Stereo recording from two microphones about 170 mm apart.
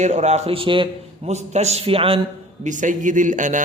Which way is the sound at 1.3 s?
40° right (ahead or behind).